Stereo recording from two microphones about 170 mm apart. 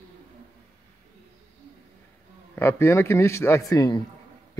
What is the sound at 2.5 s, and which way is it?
Speech, 15° left (ahead or behind).